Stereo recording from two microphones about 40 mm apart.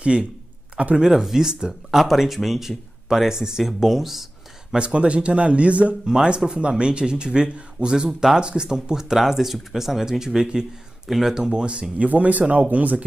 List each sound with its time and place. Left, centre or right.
0.0 s speech: right
0.9 s speech: centre
1.7 s speech: centre
4.7 s speech: right
8.1 s speech: centre
8.4 s speech: right
11.1 s speech: centre
11.3 s speech: centre
12.0 s speech: right